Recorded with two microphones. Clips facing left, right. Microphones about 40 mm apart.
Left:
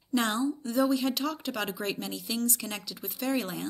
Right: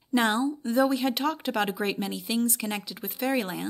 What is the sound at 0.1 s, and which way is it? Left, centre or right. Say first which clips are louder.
Speech: right 4 dB; centre.